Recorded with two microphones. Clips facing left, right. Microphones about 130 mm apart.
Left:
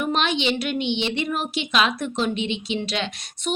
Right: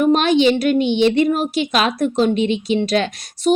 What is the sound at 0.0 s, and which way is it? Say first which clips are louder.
A woman's voice: right 9 dB; 40° right (ahead or behind).